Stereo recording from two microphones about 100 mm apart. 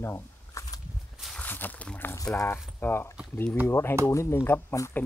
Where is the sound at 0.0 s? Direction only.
25° left (ahead or behind).